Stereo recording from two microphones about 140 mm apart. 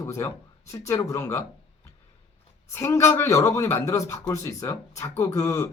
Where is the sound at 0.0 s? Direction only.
20° left (ahead or behind).